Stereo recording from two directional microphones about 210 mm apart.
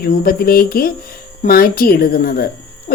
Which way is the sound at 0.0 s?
45° left (ahead or behind).